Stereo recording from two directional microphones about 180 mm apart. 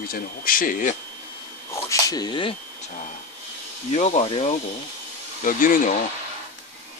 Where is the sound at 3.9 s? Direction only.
40° left (ahead or behind).